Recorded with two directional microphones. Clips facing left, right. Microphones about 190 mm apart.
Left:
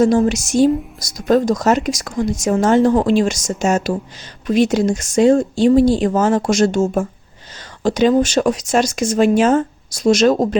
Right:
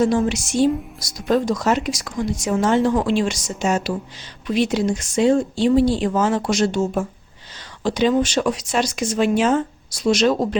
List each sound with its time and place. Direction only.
0.0 s a woman's voice: 45° left (ahead or behind)